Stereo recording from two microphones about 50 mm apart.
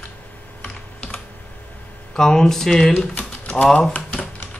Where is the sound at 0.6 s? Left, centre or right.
Left.